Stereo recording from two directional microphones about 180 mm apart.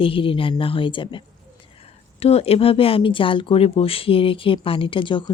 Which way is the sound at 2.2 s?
35° left (ahead or behind).